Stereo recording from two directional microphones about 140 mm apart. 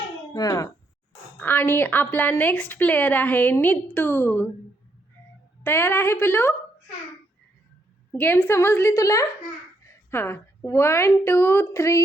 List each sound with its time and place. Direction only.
0.3 s speech: 25° left (ahead or behind)
1.4 s a woman's voice: 15° left (ahead or behind)
5.6 s a woman's voice: 15° left (ahead or behind)
8.1 s a woman's voice: 15° left (ahead or behind)